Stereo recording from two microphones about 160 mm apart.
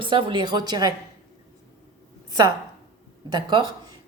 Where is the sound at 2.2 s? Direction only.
25° right (ahead or behind).